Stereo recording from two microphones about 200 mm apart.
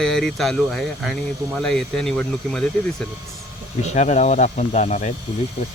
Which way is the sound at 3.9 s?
35° left (ahead or behind).